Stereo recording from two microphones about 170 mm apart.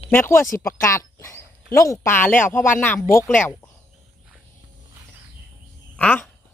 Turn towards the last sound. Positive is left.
turn(degrees=5)  # may be behind; listen again after turning